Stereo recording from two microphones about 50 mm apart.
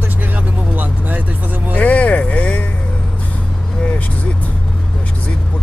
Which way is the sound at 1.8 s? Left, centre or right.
Left.